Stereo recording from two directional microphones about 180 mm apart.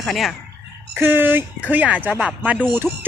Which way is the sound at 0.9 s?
10° right (ahead or behind).